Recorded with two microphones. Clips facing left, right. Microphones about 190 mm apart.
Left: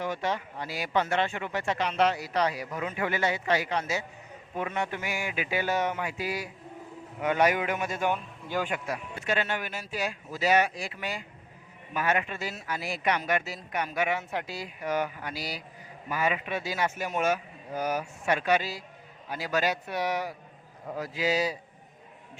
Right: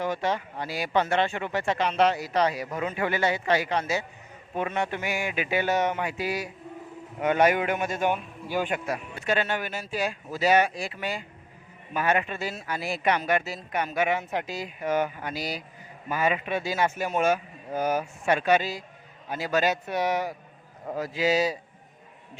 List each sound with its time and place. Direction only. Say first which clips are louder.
0.0 s a man's voice: right 3 dB; 35° right (ahead or behind)
5.1 s music: right 4 dB; 70° right (ahead or behind)
5.7 s a man's voice: right 3 dB; 20° right (ahead or behind)
6.0 s music: right 3 dB; 70° right (ahead or behind)
7.2 s a man's voice: right 3 dB; 55° right (ahead or behind)
8.0 s a man's voice: right 3 dB; 15° right (ahead or behind)
8.7 s a man's voice: right 3 dB; 40° right (ahead or behind); by 21.5 s 25° right (ahead or behind)